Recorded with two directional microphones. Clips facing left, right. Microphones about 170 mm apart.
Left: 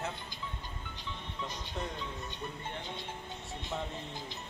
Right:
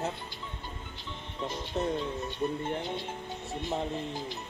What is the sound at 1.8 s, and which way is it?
Speech, 40° right (ahead or behind).